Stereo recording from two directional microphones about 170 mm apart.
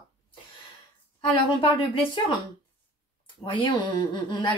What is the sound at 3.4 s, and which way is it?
Speech, 30° left (ahead or behind).